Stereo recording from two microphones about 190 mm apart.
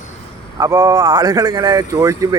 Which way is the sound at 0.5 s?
20° right (ahead or behind).